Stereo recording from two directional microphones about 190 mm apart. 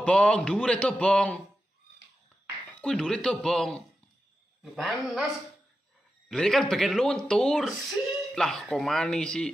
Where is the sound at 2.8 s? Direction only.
5° left (ahead or behind).